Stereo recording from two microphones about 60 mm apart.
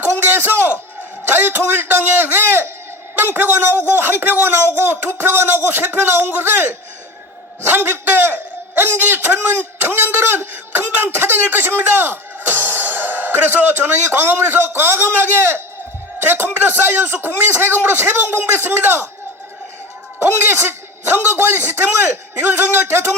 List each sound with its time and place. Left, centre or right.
0.0 s a sound: right
1.3 s speech: right
7.7 s a man's voice: right
16.1 s music: right
16.6 s speech: right
20.1 s speech: right